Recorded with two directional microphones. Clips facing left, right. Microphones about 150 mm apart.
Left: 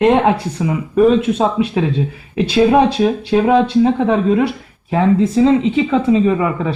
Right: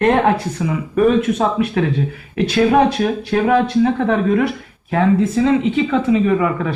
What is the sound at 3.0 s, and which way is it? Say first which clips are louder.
A woman's voice: left 3 dB; 25° left (ahead or behind).